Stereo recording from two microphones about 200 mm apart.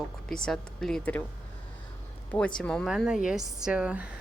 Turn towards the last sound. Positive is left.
turn(degrees=-5)  # may be behind; listen again after turning